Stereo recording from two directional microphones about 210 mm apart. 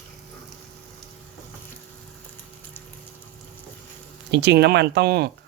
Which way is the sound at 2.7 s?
10° left (ahead or behind).